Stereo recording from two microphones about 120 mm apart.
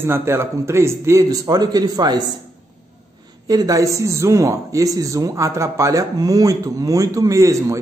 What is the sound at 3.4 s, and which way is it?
A man's voice, 30° right (ahead or behind).